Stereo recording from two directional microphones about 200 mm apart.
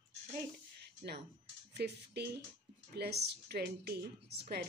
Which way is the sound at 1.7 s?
55° right (ahead or behind).